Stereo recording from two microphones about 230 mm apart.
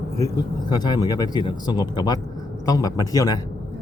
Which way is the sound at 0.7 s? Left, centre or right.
Centre.